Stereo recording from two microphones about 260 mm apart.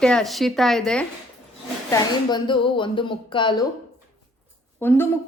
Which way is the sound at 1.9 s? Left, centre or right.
Centre.